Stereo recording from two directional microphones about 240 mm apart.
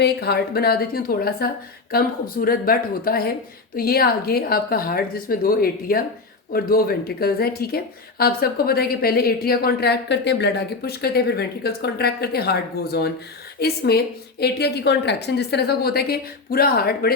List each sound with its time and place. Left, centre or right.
0.0 s a woman's voice: left